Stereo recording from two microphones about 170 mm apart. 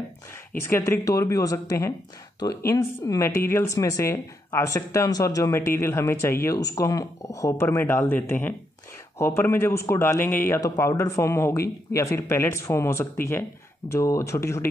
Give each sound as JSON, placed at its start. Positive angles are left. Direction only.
{"t": 0.6, "sound": "speech", "side_deg": 15}